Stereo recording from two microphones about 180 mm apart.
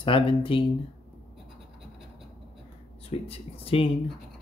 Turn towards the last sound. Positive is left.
turn(degrees=30)  # may be behind; listen again after turning